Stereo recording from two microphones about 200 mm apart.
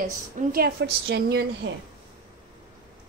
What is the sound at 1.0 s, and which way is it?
Speech, 60° right (ahead or behind).